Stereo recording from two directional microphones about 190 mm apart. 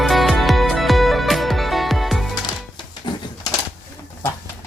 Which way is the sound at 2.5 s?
20° left (ahead or behind).